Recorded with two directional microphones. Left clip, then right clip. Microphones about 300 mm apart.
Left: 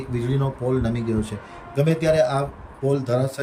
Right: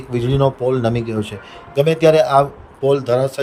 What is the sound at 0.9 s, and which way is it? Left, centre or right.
Speech, centre.